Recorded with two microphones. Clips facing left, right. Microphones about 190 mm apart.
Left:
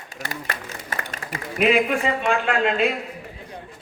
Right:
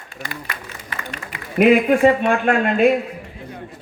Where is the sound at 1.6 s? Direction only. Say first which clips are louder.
Right 7 dB; 50° right (ahead or behind).